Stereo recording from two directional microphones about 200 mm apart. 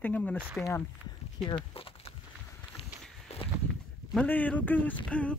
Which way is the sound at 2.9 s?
Centre (ahead or behind).